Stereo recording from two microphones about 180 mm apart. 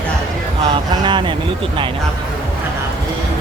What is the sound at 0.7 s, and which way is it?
Speech, 25° right (ahead or behind).